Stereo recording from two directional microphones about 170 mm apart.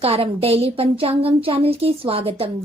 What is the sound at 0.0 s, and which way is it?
A woman's voice, 35° right (ahead or behind).